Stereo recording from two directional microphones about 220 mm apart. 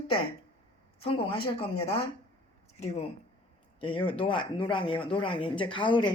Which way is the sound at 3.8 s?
25° left (ahead or behind).